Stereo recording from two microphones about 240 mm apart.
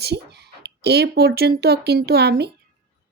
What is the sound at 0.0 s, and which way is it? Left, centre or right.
Speech, right.